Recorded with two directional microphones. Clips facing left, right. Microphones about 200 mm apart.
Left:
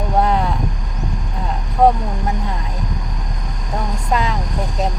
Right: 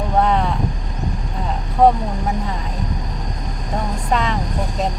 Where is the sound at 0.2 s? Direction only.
5° left (ahead or behind).